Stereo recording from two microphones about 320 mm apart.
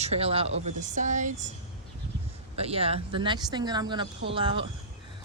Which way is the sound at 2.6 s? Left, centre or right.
Centre.